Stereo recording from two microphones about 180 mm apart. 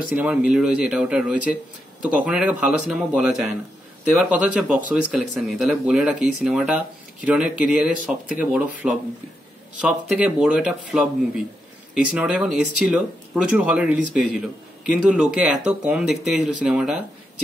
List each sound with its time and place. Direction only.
0.1 s speech: 5° right (ahead or behind)